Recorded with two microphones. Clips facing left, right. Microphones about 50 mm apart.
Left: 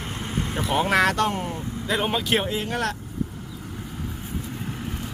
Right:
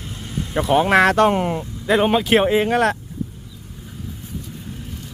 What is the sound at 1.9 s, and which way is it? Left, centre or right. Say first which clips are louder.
Speech: right 8 dB; right.